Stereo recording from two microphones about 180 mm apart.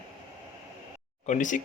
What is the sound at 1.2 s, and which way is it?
Speech, 45° left (ahead or behind).